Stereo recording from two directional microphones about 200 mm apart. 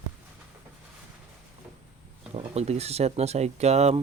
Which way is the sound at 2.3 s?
30° right (ahead or behind).